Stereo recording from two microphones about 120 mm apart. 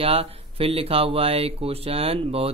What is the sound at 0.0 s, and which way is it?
Speech, 55° right (ahead or behind).